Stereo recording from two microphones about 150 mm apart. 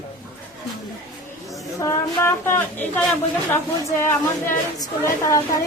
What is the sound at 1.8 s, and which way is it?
A woman's voice, 15° left (ahead or behind).